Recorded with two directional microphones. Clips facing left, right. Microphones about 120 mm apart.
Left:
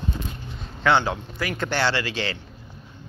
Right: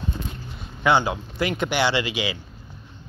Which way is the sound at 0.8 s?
15° right (ahead or behind).